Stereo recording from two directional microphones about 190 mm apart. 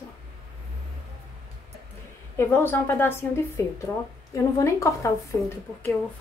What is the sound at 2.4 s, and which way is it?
Speech, 10° left (ahead or behind).